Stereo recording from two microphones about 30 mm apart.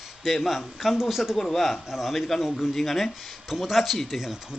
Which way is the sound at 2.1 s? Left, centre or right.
Centre.